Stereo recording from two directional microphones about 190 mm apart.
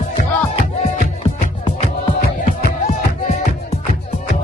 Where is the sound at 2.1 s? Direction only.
45° left (ahead or behind).